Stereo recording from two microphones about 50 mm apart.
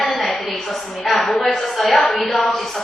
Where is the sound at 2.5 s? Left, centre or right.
Centre.